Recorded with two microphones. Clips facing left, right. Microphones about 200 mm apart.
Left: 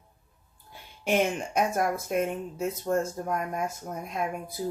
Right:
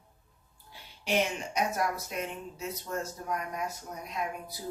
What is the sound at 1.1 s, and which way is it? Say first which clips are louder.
Speech: left 4 dB; 50° left (ahead or behind).